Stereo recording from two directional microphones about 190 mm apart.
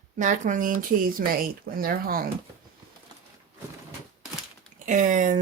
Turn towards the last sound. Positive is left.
turn(degrees=-40)  # may be behind; listen again after turning